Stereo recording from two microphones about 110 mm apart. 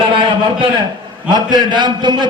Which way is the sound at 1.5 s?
45° right (ahead or behind).